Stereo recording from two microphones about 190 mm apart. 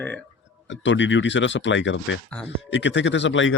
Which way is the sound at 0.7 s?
75° left (ahead or behind).